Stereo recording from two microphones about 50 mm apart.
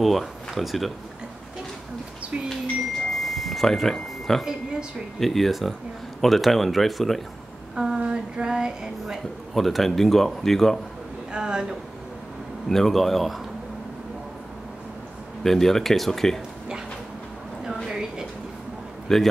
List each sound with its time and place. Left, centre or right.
0.0 s speech: centre
3.1 s smoke detector: centre
5.2 s a man's voice: centre
7.7 s female singing: centre
9.5 s a man's voice: centre
11.3 s speech: centre
12.6 s a man's voice: centre
15.4 s speech: centre
17.8 s a sound: centre
19.1 s a man's voice: centre